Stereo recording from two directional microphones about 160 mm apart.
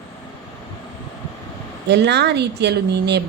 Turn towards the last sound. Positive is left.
turn(degrees=-90)